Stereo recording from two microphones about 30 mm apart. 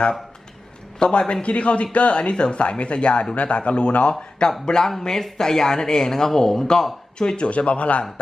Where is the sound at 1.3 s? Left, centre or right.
Left.